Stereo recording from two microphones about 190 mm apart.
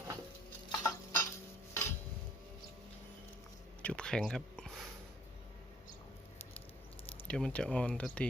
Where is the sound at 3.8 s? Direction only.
5° left (ahead or behind).